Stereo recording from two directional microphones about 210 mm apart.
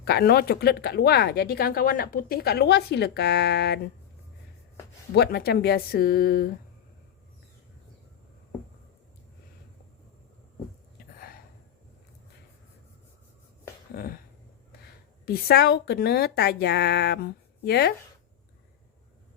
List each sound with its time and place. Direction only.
0.0 s speech: 50° left (ahead or behind)
5.1 s speech: 50° left (ahead or behind)
13.9 s a sound: 45° left (ahead or behind)
15.3 s speech: 50° left (ahead or behind)